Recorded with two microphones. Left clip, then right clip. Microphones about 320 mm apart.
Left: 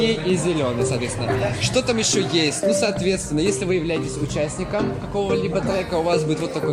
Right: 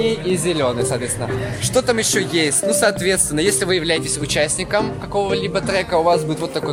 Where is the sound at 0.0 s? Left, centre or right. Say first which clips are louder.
Right 1 dB; right.